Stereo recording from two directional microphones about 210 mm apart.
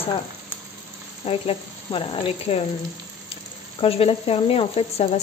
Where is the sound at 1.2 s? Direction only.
25° left (ahead or behind).